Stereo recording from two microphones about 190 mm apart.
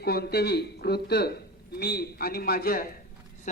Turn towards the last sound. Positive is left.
turn(degrees=40)  # may be behind; listen again after turning